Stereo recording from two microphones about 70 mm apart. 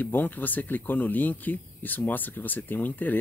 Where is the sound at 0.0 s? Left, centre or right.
Left.